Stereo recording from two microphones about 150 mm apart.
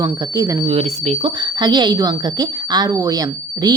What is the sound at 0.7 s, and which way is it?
Speech, 45° right (ahead or behind).